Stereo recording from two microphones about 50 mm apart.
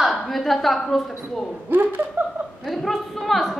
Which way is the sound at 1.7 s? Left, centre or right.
Right.